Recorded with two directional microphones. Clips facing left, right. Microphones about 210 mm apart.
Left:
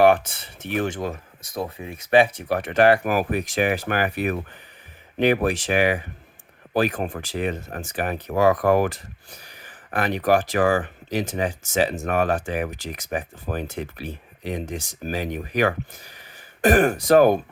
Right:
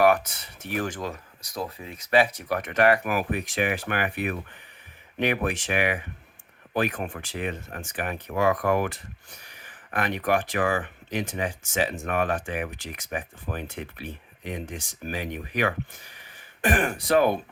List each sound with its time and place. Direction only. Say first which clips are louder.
0.0 s speech: left 4 dB; 30° left (ahead or behind); by 17.4 s 45° left (ahead or behind)